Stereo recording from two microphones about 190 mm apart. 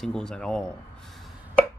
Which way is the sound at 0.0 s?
5° left (ahead or behind).